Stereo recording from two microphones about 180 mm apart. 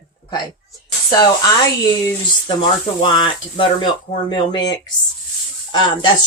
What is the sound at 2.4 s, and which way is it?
Speech, 25° left (ahead or behind).